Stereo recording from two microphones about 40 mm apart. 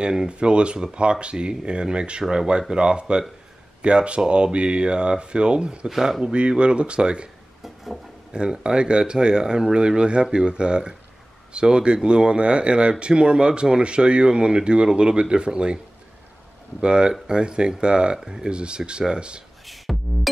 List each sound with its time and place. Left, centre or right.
0.0 s speech: right
5.9 s speech: centre
6.2 s speech: right
7.6 s a sound: centre
8.3 s speech: right
16.8 s speech: right
19.6 s music: centre